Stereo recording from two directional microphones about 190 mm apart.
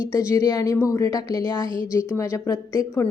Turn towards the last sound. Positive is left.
turn(degrees=15)  # may be behind; listen again after turning